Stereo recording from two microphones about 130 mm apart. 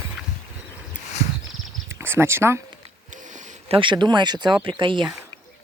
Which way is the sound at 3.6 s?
40° right (ahead or behind).